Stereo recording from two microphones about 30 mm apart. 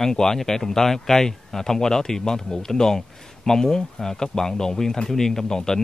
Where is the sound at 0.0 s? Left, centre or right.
Centre.